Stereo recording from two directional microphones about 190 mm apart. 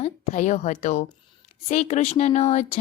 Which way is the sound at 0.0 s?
40° left (ahead or behind).